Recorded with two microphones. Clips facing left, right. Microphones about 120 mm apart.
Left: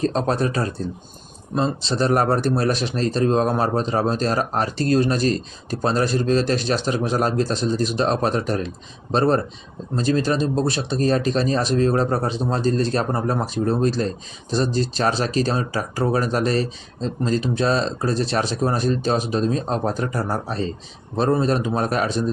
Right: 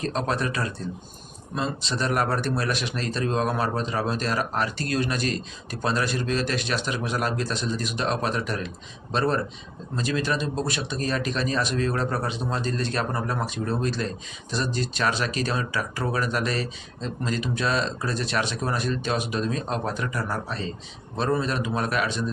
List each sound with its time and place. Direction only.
0.0 s speech: 35° left (ahead or behind)